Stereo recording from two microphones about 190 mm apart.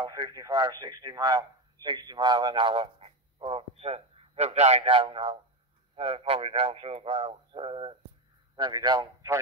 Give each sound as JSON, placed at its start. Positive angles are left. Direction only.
{"t": 0.0, "sound": "a man's voice", "side_deg": -20}